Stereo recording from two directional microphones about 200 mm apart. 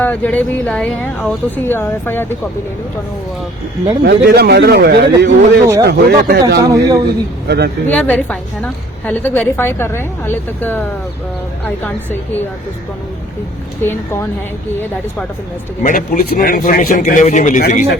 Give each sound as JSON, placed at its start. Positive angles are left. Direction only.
{"t": 0.0, "sound": "a woman's voice", "side_deg": 10}
{"t": 4.0, "sound": "speech", "side_deg": -55}
{"t": 6.6, "sound": "a man's voice", "side_deg": -15}
{"t": 7.4, "sound": "speech", "side_deg": -55}
{"t": 7.9, "sound": "a woman's voice", "side_deg": 5}
{"t": 13.8, "sound": "a woman's voice", "side_deg": 10}
{"t": 15.8, "sound": "a man's voice", "side_deg": 40}